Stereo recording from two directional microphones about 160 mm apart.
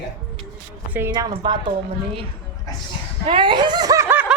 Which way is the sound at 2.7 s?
20° left (ahead or behind).